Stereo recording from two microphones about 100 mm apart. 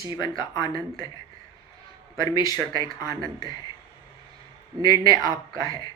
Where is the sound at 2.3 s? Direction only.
40° left (ahead or behind).